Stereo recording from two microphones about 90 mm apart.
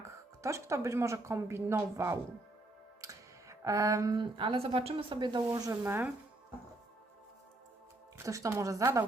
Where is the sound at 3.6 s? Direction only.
35° right (ahead or behind).